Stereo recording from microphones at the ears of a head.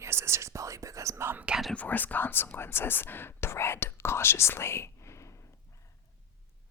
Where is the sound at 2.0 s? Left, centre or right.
Left.